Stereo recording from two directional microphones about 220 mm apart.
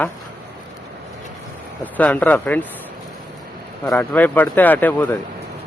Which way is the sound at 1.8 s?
5° left (ahead or behind).